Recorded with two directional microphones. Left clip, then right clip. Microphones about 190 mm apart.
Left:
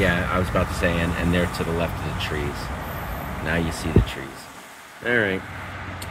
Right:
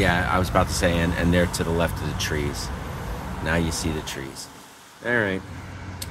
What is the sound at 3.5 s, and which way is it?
Speech, 20° right (ahead or behind).